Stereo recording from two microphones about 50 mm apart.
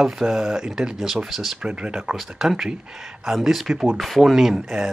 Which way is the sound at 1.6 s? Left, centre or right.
Centre.